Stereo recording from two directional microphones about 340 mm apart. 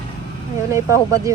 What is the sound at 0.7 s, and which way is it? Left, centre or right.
Speech, centre.